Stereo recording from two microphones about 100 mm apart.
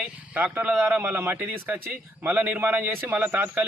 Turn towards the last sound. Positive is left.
turn(degrees=-20)  # may be behind; listen again after turning